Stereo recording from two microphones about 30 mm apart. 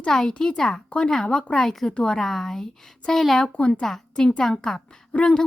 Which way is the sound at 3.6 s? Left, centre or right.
Left.